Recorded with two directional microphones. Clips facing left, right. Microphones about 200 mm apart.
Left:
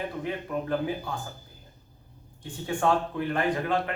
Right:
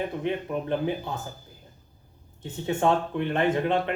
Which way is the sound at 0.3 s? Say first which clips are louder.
Right 2 dB; 25° right (ahead or behind).